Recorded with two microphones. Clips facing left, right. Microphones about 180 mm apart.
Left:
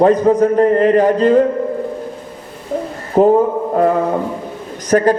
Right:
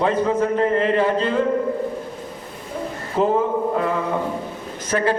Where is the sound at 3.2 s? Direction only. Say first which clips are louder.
Left 9 dB; 45° left (ahead or behind).